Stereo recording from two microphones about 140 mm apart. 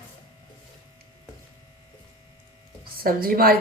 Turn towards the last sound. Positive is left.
turn(degrees=-90)